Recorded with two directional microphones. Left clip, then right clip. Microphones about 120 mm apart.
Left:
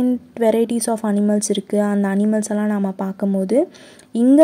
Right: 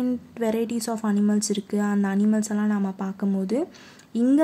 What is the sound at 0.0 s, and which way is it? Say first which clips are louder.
Speech: left 9 dB; 35° left (ahead or behind).